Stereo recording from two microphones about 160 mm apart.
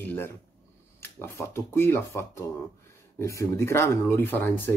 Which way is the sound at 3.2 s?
20° left (ahead or behind).